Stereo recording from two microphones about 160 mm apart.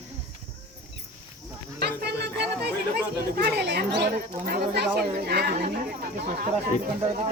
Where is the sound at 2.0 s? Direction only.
90° right.